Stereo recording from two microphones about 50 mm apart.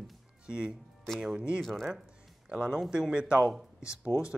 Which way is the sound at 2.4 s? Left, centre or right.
Centre.